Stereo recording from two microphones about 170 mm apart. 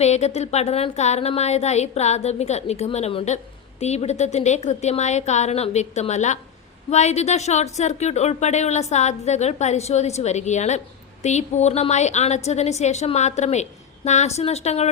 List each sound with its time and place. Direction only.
0.0 s speech: 40° left (ahead or behind)